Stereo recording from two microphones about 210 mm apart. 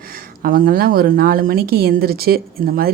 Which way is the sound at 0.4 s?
40° right (ahead or behind).